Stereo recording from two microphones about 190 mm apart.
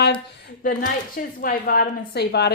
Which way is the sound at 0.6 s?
45° left (ahead or behind).